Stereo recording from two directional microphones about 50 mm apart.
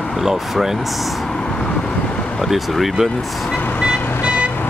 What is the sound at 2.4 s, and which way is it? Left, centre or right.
Speech, centre.